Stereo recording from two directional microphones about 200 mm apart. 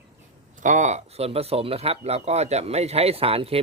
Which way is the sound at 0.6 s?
40° right (ahead or behind).